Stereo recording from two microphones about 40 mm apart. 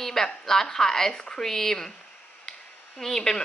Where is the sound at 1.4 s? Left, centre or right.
Centre.